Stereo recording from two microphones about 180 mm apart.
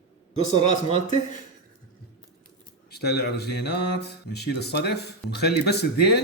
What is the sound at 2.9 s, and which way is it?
Speech, 65° left (ahead or behind).